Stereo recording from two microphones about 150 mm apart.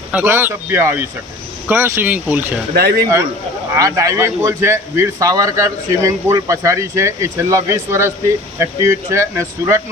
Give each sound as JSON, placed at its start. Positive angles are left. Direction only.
{"t": 0.1, "sound": "speech", "side_deg": -15}
{"t": 2.7, "sound": "speech", "side_deg": -90}
{"t": 3.8, "sound": "a man's voice", "side_deg": -20}